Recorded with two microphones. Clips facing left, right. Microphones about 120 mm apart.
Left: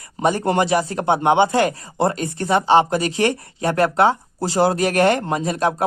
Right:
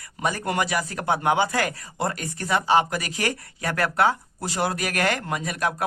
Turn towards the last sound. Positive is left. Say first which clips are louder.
# left 6 dB
turn(degrees=30)  # may be behind; listen again after turning